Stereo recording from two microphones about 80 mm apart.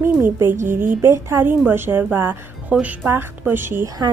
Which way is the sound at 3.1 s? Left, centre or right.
Right.